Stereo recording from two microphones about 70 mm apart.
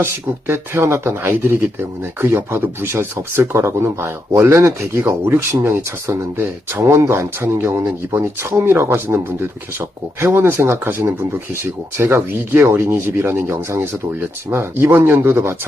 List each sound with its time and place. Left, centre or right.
0.0 s speech: right